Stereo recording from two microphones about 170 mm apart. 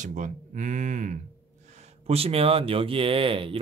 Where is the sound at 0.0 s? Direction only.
50° right (ahead or behind).